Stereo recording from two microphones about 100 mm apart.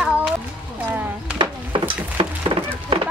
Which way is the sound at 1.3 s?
55° right (ahead or behind).